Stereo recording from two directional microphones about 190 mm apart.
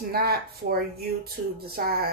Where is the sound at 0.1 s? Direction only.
55° right (ahead or behind).